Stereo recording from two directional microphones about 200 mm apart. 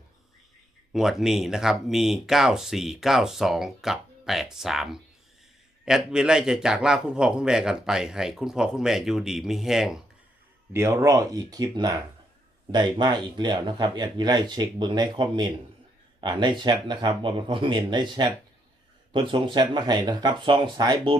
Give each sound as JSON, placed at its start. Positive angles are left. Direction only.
{"t": 0.9, "sound": "a man's voice", "side_deg": 0}
{"t": 10.7, "sound": "speech", "side_deg": -15}